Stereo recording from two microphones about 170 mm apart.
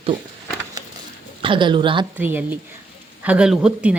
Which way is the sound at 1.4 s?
30° right (ahead or behind).